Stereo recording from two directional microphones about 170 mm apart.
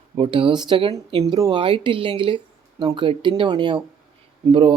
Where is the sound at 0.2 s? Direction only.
30° right (ahead or behind).